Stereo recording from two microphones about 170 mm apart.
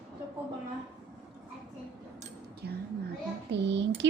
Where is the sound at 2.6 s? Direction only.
75° right (ahead or behind).